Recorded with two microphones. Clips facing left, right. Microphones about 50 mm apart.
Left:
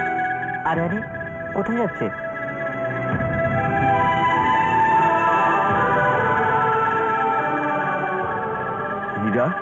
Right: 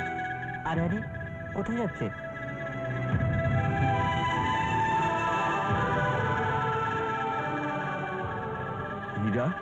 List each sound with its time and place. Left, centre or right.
0.2 s music: left
1.6 s speech: left
3.1 s music: left
9.2 s music: left